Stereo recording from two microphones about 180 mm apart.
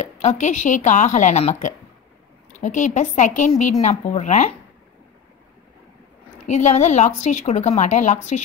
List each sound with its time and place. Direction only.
0.0 s speech: 40° left (ahead or behind)
6.4 s speech: 40° left (ahead or behind)